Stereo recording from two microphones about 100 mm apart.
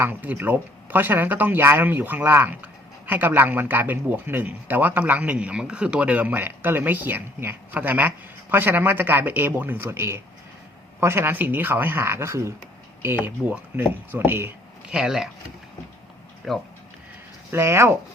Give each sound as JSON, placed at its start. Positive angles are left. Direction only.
{"t": 0.0, "sound": "speech", "side_deg": -20}
{"t": 14.8, "sound": "speech", "side_deg": -5}
{"t": 16.4, "sound": "speech", "side_deg": -5}
{"t": 17.5, "sound": "speech", "side_deg": -25}